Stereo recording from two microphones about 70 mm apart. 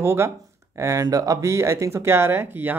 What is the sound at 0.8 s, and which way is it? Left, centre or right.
Speech, right.